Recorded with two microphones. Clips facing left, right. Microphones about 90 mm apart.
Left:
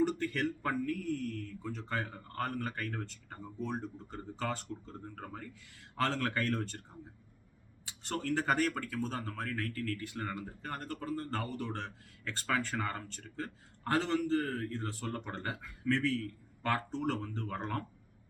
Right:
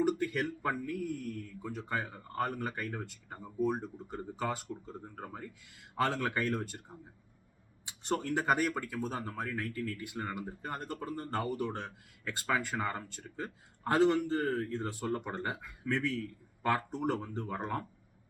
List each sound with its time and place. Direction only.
0.0 s speech: 10° right (ahead or behind)
7.9 s speech: 20° right (ahead or behind)